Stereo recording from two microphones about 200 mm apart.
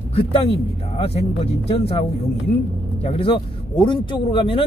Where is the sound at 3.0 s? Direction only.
25° left (ahead or behind).